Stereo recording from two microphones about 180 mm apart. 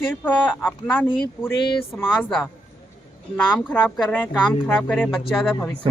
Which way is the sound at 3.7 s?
5° left (ahead or behind).